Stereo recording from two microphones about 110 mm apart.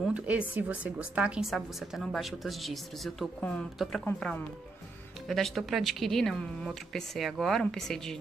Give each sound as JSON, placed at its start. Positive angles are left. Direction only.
{"t": 0.0, "sound": "a woman's voice", "side_deg": -10}